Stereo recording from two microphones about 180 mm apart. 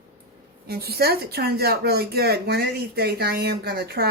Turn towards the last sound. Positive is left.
turn(degrees=-60)  # may be behind; listen again after turning